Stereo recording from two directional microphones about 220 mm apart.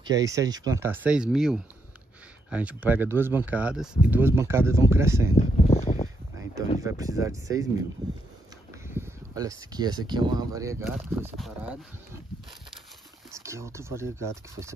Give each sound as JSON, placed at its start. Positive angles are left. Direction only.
{"t": 0.0, "sound": "speech", "side_deg": -15}
{"t": 5.3, "sound": "a sound", "side_deg": 30}
{"t": 6.3, "sound": "a sound", "side_deg": -10}
{"t": 6.8, "sound": "speech", "side_deg": -15}
{"t": 8.8, "sound": "speech", "side_deg": -10}
{"t": 11.3, "sound": "speech", "side_deg": 0}
{"t": 13.3, "sound": "speech", "side_deg": -15}